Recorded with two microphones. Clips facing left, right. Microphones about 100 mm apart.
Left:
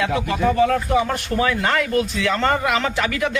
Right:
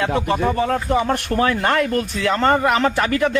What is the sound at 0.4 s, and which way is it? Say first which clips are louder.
Speech: left 2 dB; 30° right (ahead or behind).